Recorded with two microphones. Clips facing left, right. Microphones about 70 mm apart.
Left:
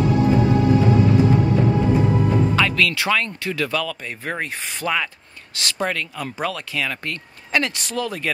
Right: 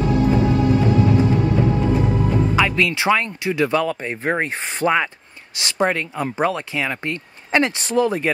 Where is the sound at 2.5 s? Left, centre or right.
Centre.